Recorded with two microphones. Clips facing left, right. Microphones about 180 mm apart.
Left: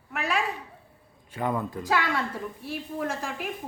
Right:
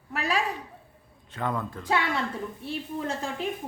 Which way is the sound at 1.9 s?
20° right (ahead or behind).